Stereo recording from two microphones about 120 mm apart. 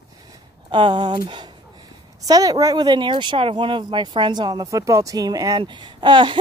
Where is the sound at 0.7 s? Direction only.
40° right (ahead or behind).